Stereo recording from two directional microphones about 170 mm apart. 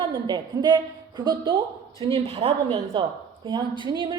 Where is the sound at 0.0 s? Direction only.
30° right (ahead or behind).